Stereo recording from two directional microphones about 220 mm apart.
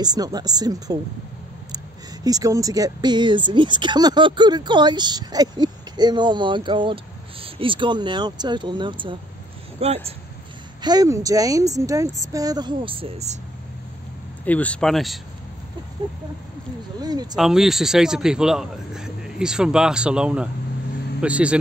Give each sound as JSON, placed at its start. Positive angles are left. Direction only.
{"t": 0.0, "sound": "speech", "side_deg": -15}
{"t": 2.2, "sound": "speech", "side_deg": -15}
{"t": 14.4, "sound": "a man's voice", "side_deg": 5}
{"t": 17.0, "sound": "speech", "side_deg": -20}
{"t": 17.4, "sound": "a man's voice", "side_deg": 0}